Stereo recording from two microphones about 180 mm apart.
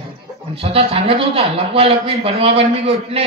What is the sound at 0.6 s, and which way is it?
Mantra, 35° right (ahead or behind).